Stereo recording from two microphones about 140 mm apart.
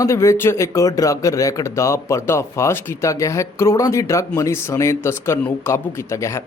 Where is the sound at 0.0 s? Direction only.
20° left (ahead or behind).